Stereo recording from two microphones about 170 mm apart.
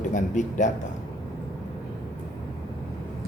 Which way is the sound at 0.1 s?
45° left (ahead or behind).